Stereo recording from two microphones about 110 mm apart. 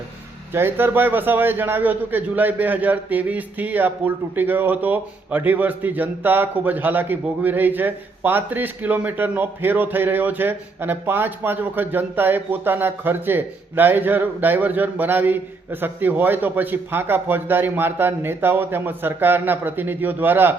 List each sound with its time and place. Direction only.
0.5 s a man's voice: 20° right (ahead or behind)